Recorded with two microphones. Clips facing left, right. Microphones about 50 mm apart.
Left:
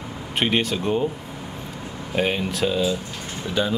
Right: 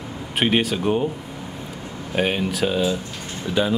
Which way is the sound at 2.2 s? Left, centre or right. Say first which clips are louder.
Right 1 dB; centre.